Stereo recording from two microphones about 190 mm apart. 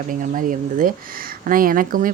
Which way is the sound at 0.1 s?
45° right (ahead or behind).